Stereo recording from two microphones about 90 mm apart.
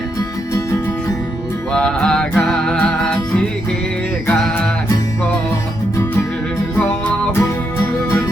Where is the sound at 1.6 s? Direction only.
10° left (ahead or behind).